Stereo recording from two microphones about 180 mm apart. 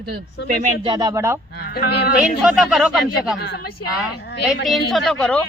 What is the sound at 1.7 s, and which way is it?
Speech, 65° left (ahead or behind).